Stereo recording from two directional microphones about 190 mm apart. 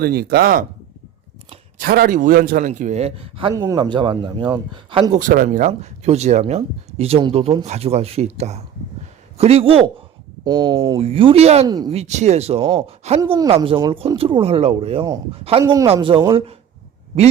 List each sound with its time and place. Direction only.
0.0 s speech: 55° right (ahead or behind)
1.8 s speech: 50° right (ahead or behind); by 5.2 s 30° right (ahead or behind)
5.2 s speech: 45° right (ahead or behind)
11.6 s speech: 20° right (ahead or behind)
11.9 s a man's voice: 35° right (ahead or behind); by 15.9 s 15° right (ahead or behind)
15.9 s speech: 25° right (ahead or behind)